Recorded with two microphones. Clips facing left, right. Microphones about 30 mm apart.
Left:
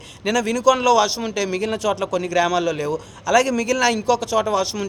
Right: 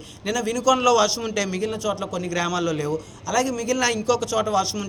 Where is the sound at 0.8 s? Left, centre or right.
Left.